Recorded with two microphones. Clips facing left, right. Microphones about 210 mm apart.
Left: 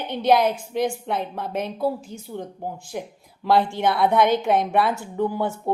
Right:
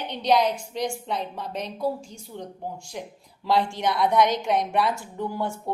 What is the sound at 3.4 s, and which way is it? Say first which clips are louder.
A woman's voice: left 4 dB; 60° left (ahead or behind).